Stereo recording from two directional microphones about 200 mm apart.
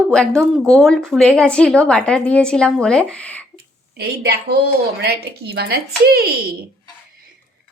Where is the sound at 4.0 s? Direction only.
50° right (ahead or behind).